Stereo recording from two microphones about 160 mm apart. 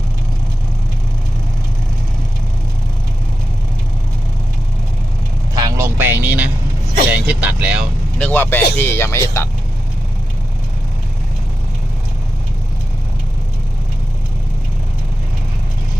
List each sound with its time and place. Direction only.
5.5 s vehicle: 20° right (ahead or behind)
8.2 s speech: 10° left (ahead or behind)